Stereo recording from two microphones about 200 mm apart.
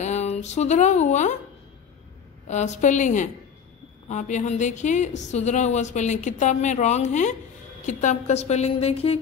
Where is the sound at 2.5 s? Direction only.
35° left (ahead or behind).